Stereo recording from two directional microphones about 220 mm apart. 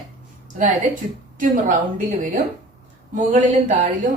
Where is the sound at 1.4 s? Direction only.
35° right (ahead or behind).